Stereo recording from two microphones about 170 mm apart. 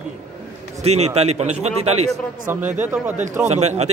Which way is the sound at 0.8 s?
40° right (ahead or behind).